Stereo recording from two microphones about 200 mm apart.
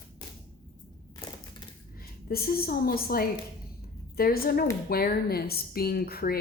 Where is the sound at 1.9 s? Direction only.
50° left (ahead or behind).